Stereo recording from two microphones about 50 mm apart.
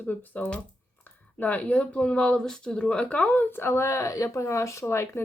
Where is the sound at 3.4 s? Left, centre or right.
Left.